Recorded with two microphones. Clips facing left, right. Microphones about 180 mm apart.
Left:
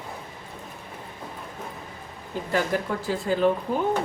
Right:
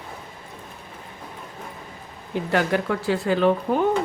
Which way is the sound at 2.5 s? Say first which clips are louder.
Right 3 dB; 70° right (ahead or behind).